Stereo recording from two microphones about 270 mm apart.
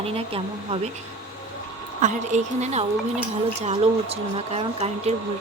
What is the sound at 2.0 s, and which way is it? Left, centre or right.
A woman's voice, right.